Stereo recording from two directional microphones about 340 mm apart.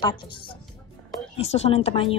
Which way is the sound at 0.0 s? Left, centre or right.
Centre.